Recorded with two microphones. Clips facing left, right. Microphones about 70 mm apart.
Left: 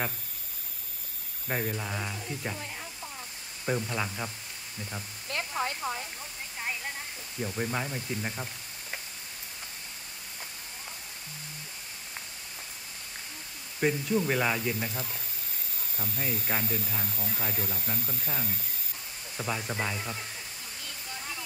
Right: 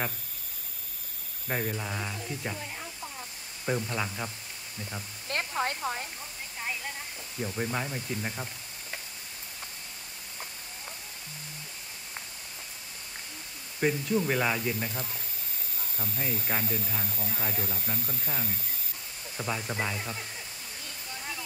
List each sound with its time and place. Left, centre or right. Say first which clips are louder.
1.5 s speech: even; centre
3.6 s speech: even; centre
5.3 s a sound: right 1 dB; right
7.4 s speech: even; centre
13.7 s speech: even; centre
16.2 s speech: even; centre
16.6 s speech: even; right
17.3 s speech: right 1 dB; centre